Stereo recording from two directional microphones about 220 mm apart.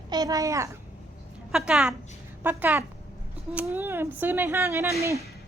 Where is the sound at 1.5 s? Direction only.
5° right (ahead or behind).